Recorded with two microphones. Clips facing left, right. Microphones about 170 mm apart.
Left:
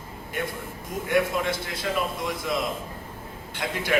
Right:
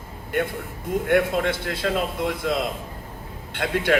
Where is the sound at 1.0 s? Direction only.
65° right (ahead or behind).